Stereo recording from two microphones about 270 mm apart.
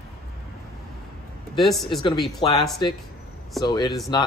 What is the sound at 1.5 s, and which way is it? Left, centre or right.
Speech, centre.